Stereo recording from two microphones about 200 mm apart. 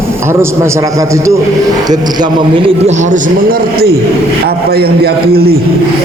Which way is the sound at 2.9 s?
35° right (ahead or behind).